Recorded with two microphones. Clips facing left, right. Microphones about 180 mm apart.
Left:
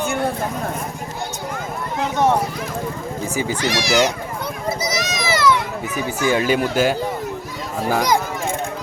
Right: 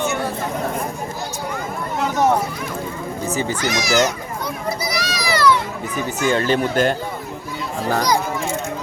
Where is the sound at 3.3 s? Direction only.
10° left (ahead or behind).